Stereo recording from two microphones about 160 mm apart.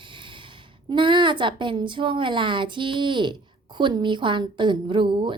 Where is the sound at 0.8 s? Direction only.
30° right (ahead or behind).